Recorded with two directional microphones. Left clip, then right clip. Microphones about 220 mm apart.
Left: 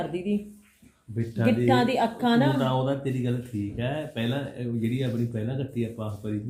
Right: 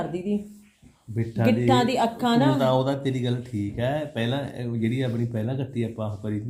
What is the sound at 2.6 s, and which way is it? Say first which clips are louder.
Speech: right 4 dB; 35° right (ahead or behind).